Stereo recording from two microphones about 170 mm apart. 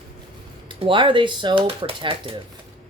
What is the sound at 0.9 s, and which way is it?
Speech, 30° right (ahead or behind).